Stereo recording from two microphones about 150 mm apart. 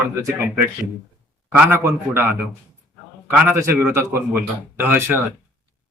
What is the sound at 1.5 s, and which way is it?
Speech, 15° right (ahead or behind).